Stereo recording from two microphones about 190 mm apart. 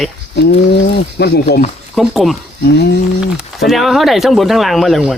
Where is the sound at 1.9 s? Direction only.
Centre (ahead or behind).